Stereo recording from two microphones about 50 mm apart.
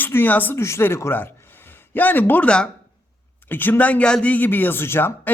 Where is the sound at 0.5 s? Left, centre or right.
Left.